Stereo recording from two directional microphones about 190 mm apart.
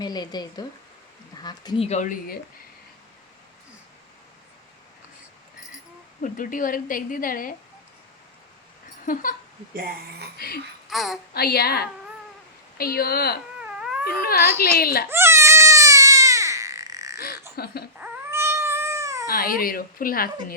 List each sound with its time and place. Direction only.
0.0 s speech: 20° left (ahead or behind); by 2.4 s 50° left (ahead or behind)
6.2 s a woman's voice: 45° left (ahead or behind)
9.7 s speech: 50° right (ahead or behind)
10.3 s a woman's voice: 55° left (ahead or behind)
10.8 s a child's voice: centre (ahead or behind)
11.3 s a woman's voice: 55° left (ahead or behind)
13.6 s cat: 5° right (ahead or behind)
14.2 s a woman's voice: 50° left (ahead or behind)
15.1 s a sound: 15° right (ahead or behind)
17.6 s a woman's voice: 55° left (ahead or behind)
18.0 s cat: 10° right (ahead or behind)
19.3 s a woman's voice: 50° left (ahead or behind)